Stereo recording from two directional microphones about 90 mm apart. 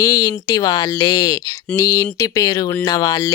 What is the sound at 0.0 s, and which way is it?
Speech, 40° left (ahead or behind).